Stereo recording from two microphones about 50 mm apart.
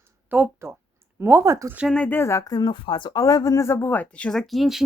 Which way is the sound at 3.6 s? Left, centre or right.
Left.